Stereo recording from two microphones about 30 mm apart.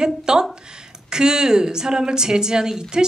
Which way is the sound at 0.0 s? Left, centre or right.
Right.